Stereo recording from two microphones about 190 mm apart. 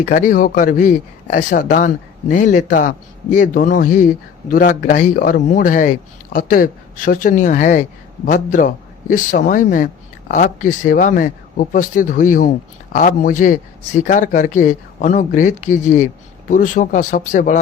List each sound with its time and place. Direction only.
0.0 s speech: 45° left (ahead or behind)